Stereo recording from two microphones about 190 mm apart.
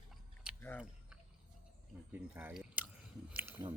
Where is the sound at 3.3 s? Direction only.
10° right (ahead or behind).